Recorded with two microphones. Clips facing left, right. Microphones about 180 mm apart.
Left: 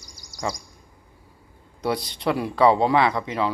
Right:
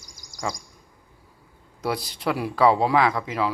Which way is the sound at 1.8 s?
5° right (ahead or behind).